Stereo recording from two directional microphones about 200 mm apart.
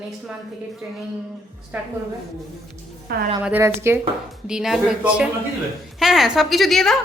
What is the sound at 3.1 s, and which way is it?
Speech, 50° right (ahead or behind).